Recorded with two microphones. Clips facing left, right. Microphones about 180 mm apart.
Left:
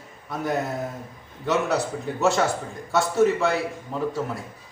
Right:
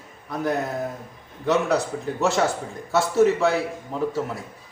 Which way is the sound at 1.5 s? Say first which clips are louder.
Right 2 dB; centre (ahead or behind).